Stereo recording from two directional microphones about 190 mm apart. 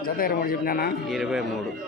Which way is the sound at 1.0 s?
Centre (ahead or behind).